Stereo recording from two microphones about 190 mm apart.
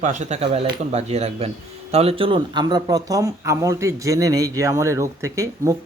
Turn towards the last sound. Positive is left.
turn(degrees=-15)  # may be behind; listen again after turning